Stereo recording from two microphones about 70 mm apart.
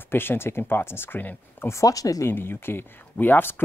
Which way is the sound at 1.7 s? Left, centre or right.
Left.